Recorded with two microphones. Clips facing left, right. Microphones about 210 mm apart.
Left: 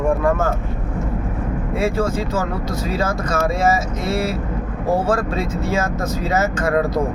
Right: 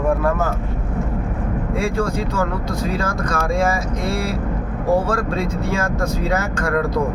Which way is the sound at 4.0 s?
5° left (ahead or behind).